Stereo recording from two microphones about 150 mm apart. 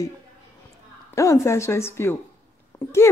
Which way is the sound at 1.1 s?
20° left (ahead or behind).